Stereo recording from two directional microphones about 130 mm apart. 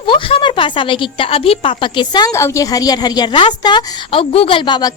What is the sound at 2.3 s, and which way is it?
A woman's voice, 20° left (ahead or behind).